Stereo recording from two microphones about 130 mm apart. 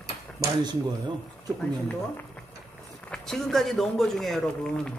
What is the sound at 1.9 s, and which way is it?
A man's voice, 10° left (ahead or behind).